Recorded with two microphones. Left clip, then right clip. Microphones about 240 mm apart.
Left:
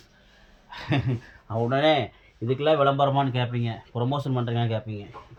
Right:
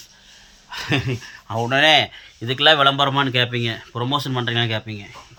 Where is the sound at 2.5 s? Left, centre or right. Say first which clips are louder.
Right 6 dB; right.